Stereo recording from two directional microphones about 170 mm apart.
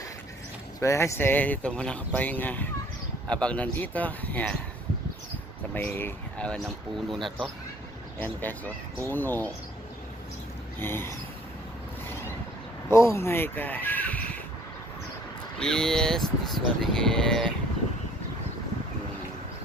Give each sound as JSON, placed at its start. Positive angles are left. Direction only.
{"t": 0.8, "sound": "speech", "side_deg": 15}
{"t": 5.7, "sound": "speech", "side_deg": 10}
{"t": 10.8, "sound": "speech", "side_deg": 15}
{"t": 12.9, "sound": "speech", "side_deg": 15}
{"t": 15.5, "sound": "speech", "side_deg": 5}